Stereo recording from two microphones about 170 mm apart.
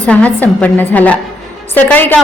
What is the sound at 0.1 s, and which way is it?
A man's voice, 10° left (ahead or behind).